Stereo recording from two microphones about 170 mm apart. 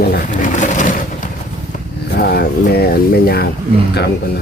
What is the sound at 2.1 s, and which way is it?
Speech, 65° left (ahead or behind).